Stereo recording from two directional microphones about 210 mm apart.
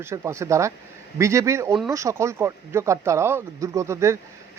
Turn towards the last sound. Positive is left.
turn(degrees=-15)  # may be behind; listen again after turning